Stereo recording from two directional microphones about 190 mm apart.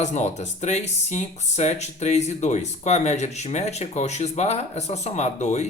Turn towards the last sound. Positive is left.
turn(degrees=35)  # may be behind; listen again after turning